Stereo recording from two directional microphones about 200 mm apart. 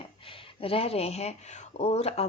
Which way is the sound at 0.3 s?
30° left (ahead or behind).